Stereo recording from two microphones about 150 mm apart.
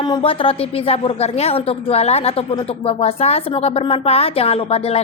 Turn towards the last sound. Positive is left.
turn(degrees=40)  # may be behind; listen again after turning